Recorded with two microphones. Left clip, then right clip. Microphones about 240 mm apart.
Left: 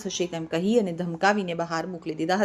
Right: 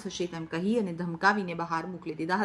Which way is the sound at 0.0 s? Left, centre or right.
Centre.